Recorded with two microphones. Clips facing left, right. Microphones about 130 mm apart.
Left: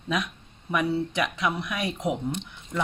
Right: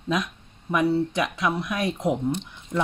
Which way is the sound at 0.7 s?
Centre (ahead or behind).